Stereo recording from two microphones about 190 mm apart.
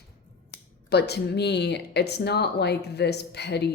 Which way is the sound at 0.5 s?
60° left (ahead or behind).